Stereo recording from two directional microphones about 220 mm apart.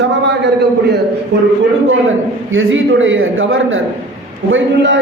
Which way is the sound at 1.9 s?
65° right (ahead or behind).